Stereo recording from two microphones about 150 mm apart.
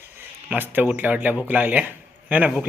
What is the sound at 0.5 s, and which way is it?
Speech, 10° right (ahead or behind).